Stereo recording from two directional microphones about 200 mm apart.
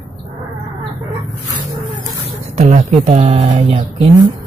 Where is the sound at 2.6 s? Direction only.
35° right (ahead or behind).